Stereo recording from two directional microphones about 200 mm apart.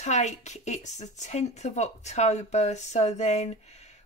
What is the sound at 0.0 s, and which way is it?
Speech, 35° left (ahead or behind).